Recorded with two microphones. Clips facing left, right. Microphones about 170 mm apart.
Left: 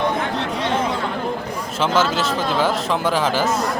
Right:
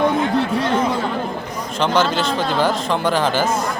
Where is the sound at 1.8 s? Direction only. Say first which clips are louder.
Right 1 dB; 5° left (ahead or behind).